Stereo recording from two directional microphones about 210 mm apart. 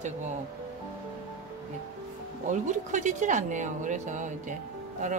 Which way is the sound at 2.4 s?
35° right (ahead or behind).